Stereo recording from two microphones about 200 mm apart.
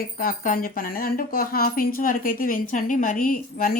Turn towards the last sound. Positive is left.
turn(degrees=45)  # may be behind; listen again after turning